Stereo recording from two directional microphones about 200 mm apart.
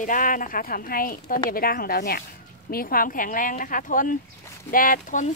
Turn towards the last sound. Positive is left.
turn(degrees=40)  # may be behind; listen again after turning